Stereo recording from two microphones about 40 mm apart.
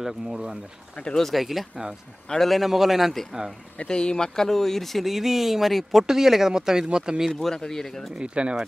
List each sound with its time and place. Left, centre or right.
0.0 s speech: centre
1.3 s speech: centre
3.7 s speech: left
4.4 s speech: centre
7.3 s speech: centre
8.2 s speech: right